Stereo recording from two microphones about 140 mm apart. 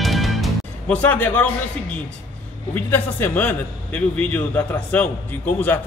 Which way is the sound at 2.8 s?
15° left (ahead or behind).